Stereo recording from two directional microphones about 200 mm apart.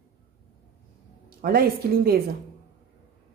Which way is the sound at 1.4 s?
50° right (ahead or behind).